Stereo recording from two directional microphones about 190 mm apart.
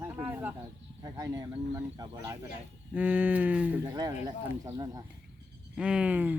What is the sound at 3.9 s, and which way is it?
Speech, 20° right (ahead or behind).